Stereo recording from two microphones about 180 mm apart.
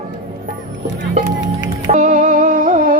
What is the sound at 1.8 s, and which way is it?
Music, 45° right (ahead or behind).